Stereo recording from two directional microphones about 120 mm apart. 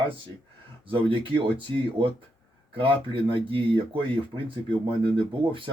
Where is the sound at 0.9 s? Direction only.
45° right (ahead or behind).